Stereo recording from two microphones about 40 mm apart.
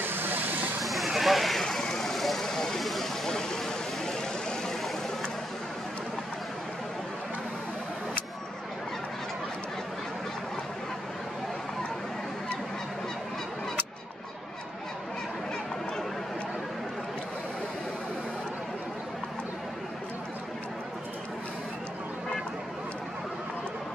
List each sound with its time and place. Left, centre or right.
0.0 s vehicle: right
0.8 s a sound: centre
2.4 s vehicle: centre
2.8 s vehicle: centre
4.0 s vehicle: centre